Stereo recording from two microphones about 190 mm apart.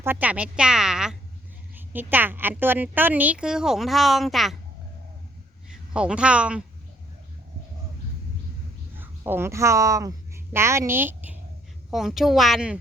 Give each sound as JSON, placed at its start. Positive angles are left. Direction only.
{"t": 0.0, "sound": "a woman's voice", "side_deg": -10}
{"t": 5.9, "sound": "a woman's voice", "side_deg": -5}
{"t": 9.0, "sound": "a woman's voice", "side_deg": -10}